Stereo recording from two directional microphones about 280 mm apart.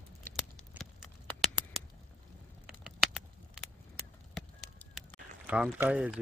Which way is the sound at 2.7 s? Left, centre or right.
Centre.